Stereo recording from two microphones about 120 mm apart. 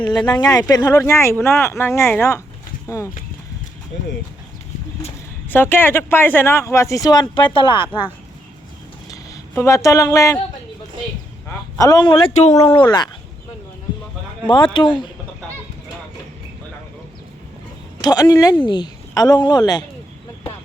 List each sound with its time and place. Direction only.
0.1 s speech: 35° left (ahead or behind)
5.5 s speech: 15° left (ahead or behind); by 8.0 s 45° left (ahead or behind)
9.0 s a sound: 25° left (ahead or behind)
11.8 s speech: 35° left (ahead or behind)
12.3 s speech: 70° left (ahead or behind); by 13.1 s 40° left (ahead or behind)
14.4 s speech: 40° left (ahead or behind)
18.0 s speech: 30° left (ahead or behind)